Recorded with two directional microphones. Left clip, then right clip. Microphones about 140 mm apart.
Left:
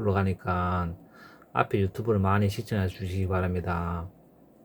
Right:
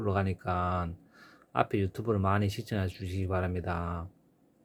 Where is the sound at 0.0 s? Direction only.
30° right (ahead or behind).